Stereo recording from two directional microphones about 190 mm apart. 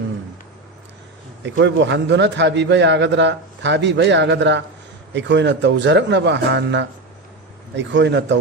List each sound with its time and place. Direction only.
1.5 s a man's voice: 70° right (ahead or behind)